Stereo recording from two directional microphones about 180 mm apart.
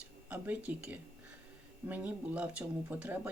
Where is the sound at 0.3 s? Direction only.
10° right (ahead or behind).